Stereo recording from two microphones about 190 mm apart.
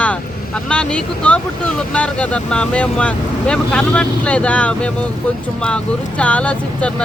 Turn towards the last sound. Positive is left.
turn(degrees=5)  # may be behind; listen again after turning